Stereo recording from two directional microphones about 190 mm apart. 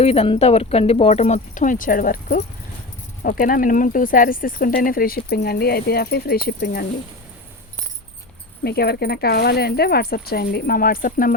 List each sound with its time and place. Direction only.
0.0 s speech: 30° left (ahead or behind); by 6.8 s 55° left (ahead or behind)
8.6 s speech: 55° left (ahead or behind)